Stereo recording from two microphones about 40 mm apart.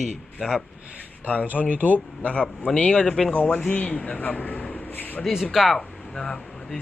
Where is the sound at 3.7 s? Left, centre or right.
Left.